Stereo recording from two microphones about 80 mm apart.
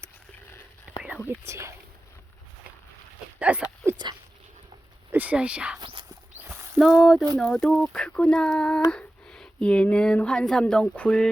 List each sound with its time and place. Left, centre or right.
0.9 s whispering: centre
1.5 s speech: right
3.3 s a sound: centre
5.1 s speech: centre
5.8 s walk: right
6.7 s speech: centre